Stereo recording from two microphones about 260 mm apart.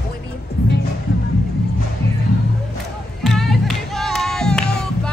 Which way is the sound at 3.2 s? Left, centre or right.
Centre.